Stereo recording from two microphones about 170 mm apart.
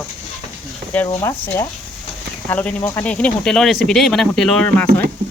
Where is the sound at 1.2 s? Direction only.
15° left (ahead or behind).